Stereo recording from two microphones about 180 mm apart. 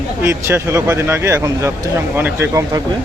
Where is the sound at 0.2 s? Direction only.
15° right (ahead or behind).